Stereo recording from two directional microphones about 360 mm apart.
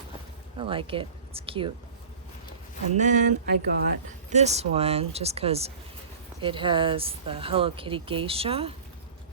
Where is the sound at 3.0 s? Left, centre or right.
Right.